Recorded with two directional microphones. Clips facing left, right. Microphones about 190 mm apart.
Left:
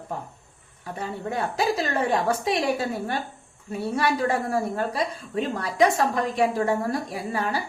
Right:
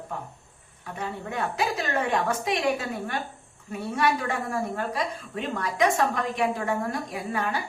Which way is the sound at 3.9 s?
35° left (ahead or behind).